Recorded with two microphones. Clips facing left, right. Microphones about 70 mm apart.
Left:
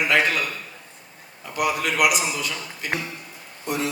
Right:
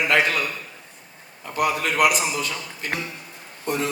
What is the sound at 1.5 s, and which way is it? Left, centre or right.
A man's voice, right.